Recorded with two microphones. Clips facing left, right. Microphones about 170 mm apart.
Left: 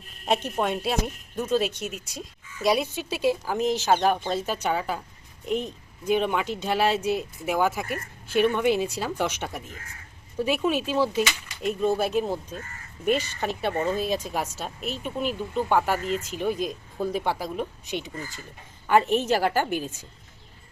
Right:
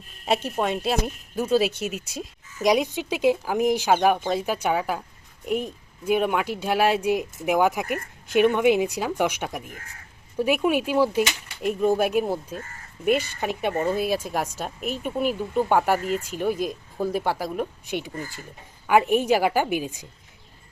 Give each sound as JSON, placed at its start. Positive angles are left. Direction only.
{"t": 0.3, "sound": "speech", "side_deg": -5}
{"t": 2.6, "sound": "a woman's voice", "side_deg": -15}